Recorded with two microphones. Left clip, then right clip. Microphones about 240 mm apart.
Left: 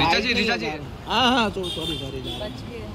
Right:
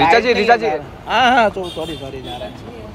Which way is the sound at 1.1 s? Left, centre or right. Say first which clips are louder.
Right 7 dB; right.